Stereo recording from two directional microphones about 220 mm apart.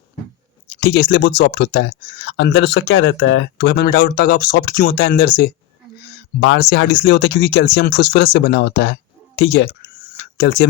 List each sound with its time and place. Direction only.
0.8 s speech: 45° left (ahead or behind)
2.3 s speech: 60° left (ahead or behind)